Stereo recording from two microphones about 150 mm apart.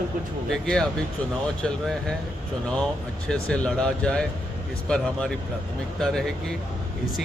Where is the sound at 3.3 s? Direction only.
5° left (ahead or behind).